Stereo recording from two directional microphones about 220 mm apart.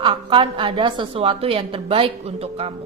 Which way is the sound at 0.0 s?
25° right (ahead or behind).